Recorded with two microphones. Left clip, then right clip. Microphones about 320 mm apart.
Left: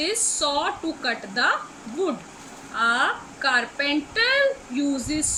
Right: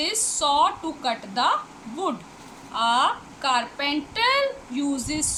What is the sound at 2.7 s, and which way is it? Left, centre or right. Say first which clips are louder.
A woman's voice: even; centre.